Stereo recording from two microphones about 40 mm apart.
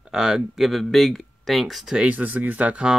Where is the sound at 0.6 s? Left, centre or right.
Centre.